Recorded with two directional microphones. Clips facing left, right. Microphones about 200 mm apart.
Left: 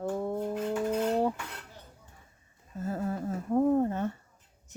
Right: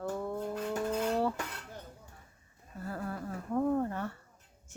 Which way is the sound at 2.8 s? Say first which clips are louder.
Left 6 dB; 20° left (ahead or behind).